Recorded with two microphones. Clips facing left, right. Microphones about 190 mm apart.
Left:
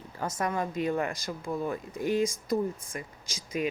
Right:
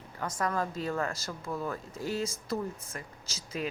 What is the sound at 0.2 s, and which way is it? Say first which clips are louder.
A woman's voice: left 1 dB; 20° left (ahead or behind).